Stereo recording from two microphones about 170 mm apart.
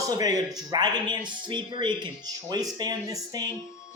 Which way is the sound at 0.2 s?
20° right (ahead or behind).